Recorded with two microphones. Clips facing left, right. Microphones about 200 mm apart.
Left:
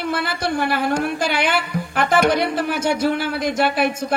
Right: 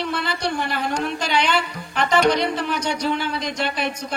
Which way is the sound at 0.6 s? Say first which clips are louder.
Left 4 dB; 10° left (ahead or behind).